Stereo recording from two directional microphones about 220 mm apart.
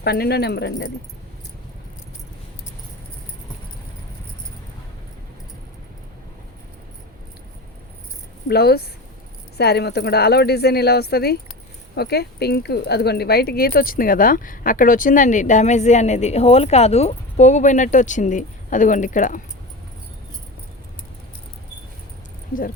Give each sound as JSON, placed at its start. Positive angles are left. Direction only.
{"t": 0.0, "sound": "speech", "side_deg": 45}
{"t": 8.4, "sound": "speech", "side_deg": 45}